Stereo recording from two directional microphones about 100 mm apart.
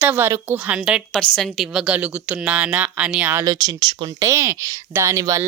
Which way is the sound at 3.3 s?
35° right (ahead or behind).